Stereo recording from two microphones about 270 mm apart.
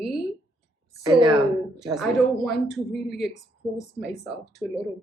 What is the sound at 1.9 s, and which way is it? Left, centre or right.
Speech, centre.